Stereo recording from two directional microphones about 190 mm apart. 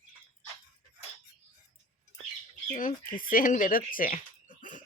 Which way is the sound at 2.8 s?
45° left (ahead or behind).